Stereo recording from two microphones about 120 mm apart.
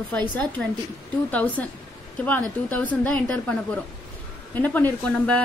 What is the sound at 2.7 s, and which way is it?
A woman's voice, 15° left (ahead or behind).